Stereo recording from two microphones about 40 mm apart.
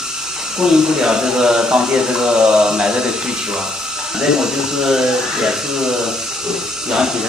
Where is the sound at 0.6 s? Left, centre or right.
Centre.